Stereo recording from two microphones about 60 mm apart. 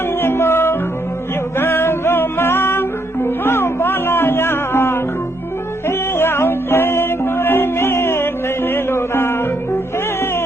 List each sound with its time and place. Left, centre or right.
0.2 s music: left